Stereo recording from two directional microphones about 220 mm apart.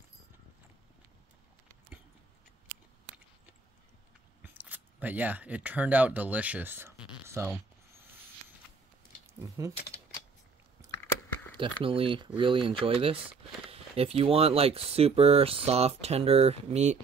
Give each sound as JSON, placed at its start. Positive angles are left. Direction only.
{"t": 4.4, "sound": "speech", "side_deg": -10}
{"t": 9.2, "sound": "speech", "side_deg": -15}
{"t": 11.8, "sound": "speech", "side_deg": -25}